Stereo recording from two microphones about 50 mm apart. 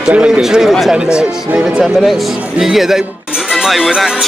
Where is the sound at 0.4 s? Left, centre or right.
Centre.